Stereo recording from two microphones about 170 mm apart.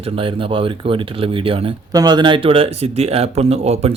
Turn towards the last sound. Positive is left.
turn(degrees=-40)  # may be behind; listen again after turning